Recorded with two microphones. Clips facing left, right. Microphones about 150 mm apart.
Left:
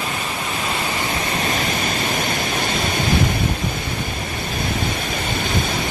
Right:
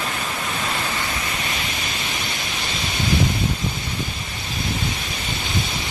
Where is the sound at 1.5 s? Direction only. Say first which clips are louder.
Left 7 dB; 45° left (ahead or behind).